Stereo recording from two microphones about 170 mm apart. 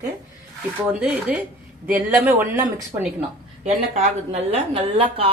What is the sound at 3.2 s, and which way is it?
A woman's voice, 40° right (ahead or behind).